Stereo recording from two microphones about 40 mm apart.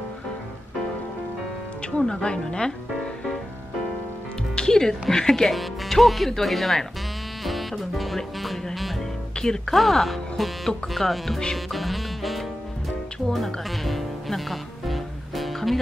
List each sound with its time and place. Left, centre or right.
1.9 s a woman's voice: centre
4.6 s speech: centre
9.4 s speech: centre
9.8 s speech: centre
11.5 s music: centre
13.7 s music: centre